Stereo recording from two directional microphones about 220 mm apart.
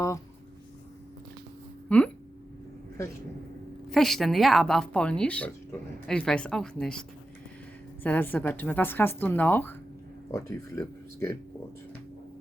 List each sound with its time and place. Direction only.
1.9 s speech: 5° left (ahead or behind)
3.8 s speech: centre (ahead or behind)
8.0 s a woman's voice: 10° left (ahead or behind)